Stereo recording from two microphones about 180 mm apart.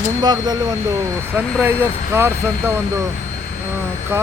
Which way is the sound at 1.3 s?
10° right (ahead or behind).